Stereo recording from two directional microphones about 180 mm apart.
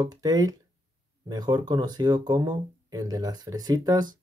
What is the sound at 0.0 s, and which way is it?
Speech, 20° right (ahead or behind).